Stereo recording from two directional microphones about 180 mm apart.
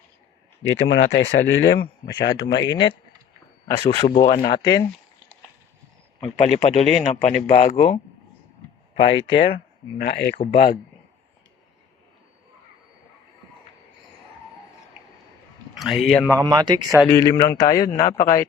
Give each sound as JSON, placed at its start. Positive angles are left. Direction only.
{"t": 0.7, "sound": "speech", "side_deg": 90}
{"t": 2.6, "sound": "a man's voice", "side_deg": 25}
{"t": 6.4, "sound": "speech", "side_deg": 40}
{"t": 7.5, "sound": "speech", "side_deg": 50}
{"t": 9.0, "sound": "a man's voice", "side_deg": 30}
{"t": 10.0, "sound": "speech", "side_deg": 60}
{"t": 10.5, "sound": "speech", "side_deg": 50}
{"t": 15.8, "sound": "a man's voice", "side_deg": 0}
{"t": 16.3, "sound": "speech", "side_deg": -20}
{"t": 17.1, "sound": "a man's voice", "side_deg": 20}